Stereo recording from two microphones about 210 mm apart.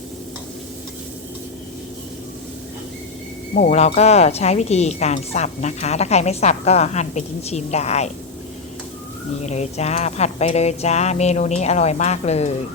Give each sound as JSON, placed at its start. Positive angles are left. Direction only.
{"t": 3.5, "sound": "speech", "side_deg": 35}
{"t": 9.4, "sound": "speech", "side_deg": 30}